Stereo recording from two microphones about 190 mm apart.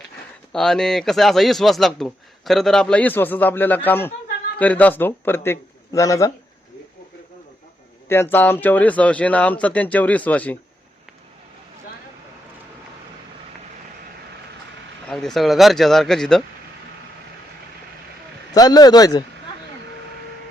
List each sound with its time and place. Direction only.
0.5 s a man's voice: 5° left (ahead or behind)
8.0 s a man's voice: 10° left (ahead or behind)
15.1 s speech: centre (ahead or behind)
18.5 s speech: 20° left (ahead or behind)